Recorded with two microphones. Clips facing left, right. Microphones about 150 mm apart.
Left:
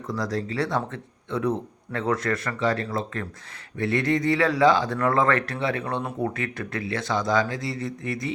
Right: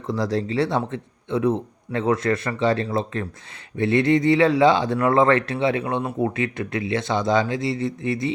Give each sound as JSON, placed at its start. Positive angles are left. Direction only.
{"t": 0.1, "sound": "speech", "side_deg": -30}